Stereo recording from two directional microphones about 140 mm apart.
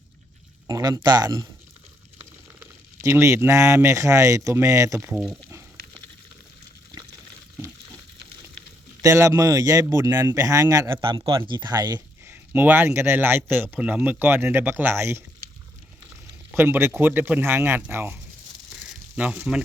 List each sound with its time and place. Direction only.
0.7 s speech: 25° right (ahead or behind)
2.6 s speech: 20° right (ahead or behind)
5.3 s frying: 20° right (ahead or behind)
9.0 s speech: 25° right (ahead or behind)
11.0 s speech: 35° right (ahead or behind)
12.2 s a man's voice: 15° right (ahead or behind)
16.6 s a man's voice: 15° right (ahead or behind)
18.9 s sizzle: 10° right (ahead or behind)